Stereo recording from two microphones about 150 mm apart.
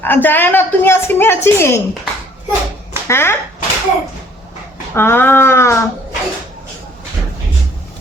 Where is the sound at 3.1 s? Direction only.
15° left (ahead or behind).